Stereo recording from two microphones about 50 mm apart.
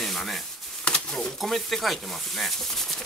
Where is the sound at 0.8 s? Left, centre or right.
Centre.